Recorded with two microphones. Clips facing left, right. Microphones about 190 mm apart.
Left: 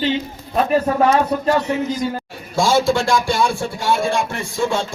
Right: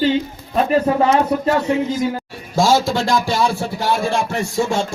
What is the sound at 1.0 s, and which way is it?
Speech, 25° right (ahead or behind).